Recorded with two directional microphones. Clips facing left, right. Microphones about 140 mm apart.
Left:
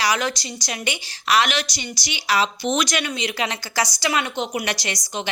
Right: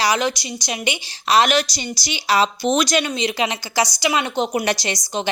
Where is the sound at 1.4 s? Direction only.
35° right (ahead or behind).